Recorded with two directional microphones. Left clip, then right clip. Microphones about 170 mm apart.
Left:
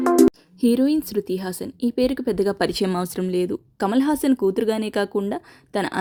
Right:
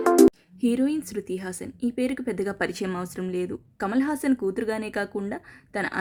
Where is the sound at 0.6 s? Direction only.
25° left (ahead or behind).